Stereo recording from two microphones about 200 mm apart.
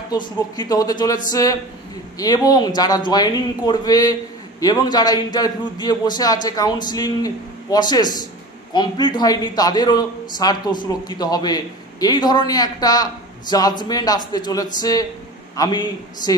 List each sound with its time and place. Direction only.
0.1 s a man's voice: 20° left (ahead or behind)